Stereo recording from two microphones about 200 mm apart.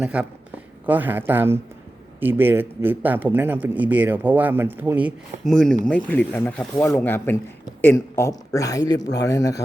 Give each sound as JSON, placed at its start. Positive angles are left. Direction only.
{"t": 0.0, "sound": "a man's voice", "side_deg": -5}